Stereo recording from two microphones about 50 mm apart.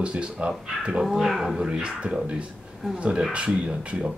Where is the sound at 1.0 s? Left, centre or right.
Centre.